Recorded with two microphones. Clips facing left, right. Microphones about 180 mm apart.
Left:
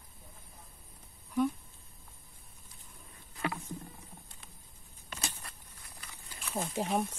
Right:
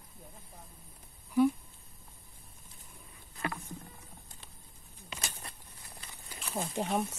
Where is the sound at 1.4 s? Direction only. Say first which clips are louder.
Right 4 dB; 5° right (ahead or behind).